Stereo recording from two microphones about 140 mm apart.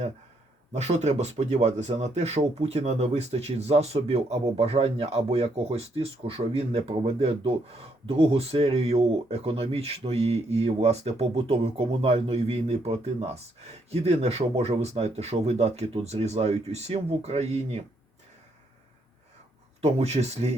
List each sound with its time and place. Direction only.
0.7 s speech: 55° right (ahead or behind)
19.8 s speech: 50° right (ahead or behind)